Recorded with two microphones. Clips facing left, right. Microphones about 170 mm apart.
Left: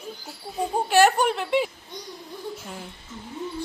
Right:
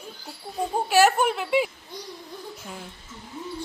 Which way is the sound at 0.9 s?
5° right (ahead or behind).